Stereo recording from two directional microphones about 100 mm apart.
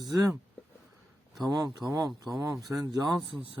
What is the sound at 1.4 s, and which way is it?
Speech, 40° right (ahead or behind).